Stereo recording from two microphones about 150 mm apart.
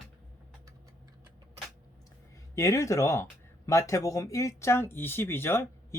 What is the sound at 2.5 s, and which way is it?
Speech, 20° left (ahead or behind).